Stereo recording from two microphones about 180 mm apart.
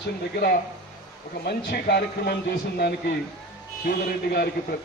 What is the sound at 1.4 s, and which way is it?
A man's voice, 60° left (ahead or behind).